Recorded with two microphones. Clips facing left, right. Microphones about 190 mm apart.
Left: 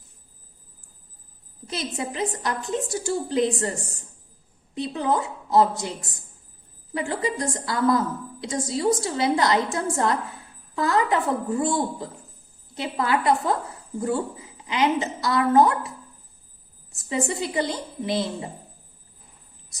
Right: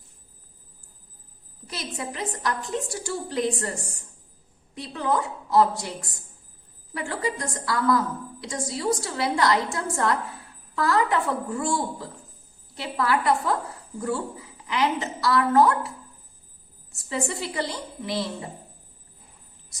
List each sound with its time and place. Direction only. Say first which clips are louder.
1.6 s a woman's voice: left 4 dB; 25° left (ahead or behind)
4.7 s a woman's voice: left 2 dB; 20° left (ahead or behind)
17.1 s a woman's voice: left 3 dB; 20° left (ahead or behind)